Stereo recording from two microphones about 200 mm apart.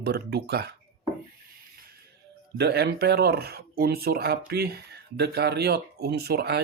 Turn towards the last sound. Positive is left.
turn(degrees=-55)  # may be behind; listen again after turning